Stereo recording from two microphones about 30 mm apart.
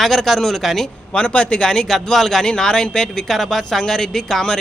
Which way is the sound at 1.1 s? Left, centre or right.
Left.